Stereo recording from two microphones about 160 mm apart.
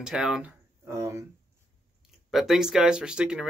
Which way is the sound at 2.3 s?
Centre (ahead or behind).